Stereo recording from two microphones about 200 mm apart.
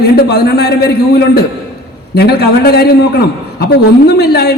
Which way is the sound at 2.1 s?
50° left (ahead or behind).